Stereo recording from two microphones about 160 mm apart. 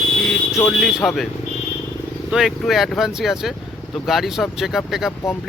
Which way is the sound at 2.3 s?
Centre (ahead or behind).